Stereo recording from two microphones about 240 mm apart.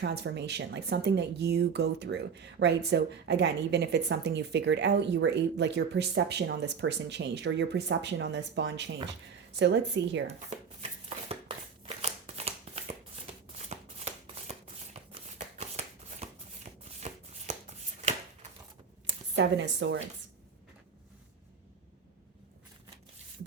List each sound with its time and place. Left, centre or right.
0.0 s speech: right
10.2 s a sound: right
13.7 s shuffling cards: right
19.4 s speech: right